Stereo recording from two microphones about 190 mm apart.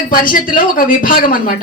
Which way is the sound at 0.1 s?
50° left (ahead or behind).